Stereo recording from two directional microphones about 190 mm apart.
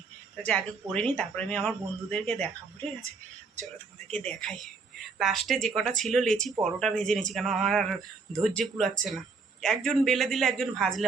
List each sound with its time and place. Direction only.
0.4 s speech: 5° left (ahead or behind)
4.1 s speech: 5° left (ahead or behind)